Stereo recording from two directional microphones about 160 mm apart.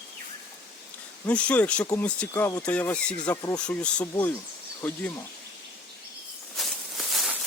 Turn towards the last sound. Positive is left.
turn(degrees=0)  # may be behind; listen again after turning